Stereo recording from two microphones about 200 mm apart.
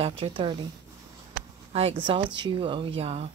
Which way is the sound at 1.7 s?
30° right (ahead or behind).